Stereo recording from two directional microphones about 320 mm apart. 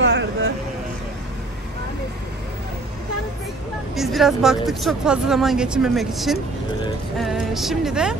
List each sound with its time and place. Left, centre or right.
0.0 s vehicle: right
3.9 s speech: centre